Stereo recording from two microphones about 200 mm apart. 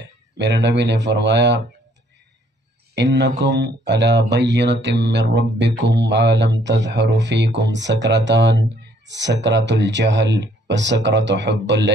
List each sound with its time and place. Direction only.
0.4 s speech: 60° right (ahead or behind)
2.9 s speech: 60° right (ahead or behind)